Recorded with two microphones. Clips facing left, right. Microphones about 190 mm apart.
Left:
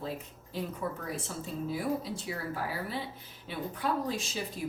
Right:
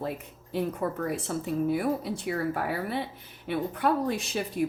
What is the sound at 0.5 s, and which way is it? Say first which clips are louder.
A woman's voice: right 6 dB; 60° right (ahead or behind).